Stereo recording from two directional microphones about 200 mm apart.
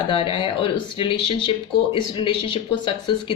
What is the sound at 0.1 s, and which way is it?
Speech, 25° left (ahead or behind).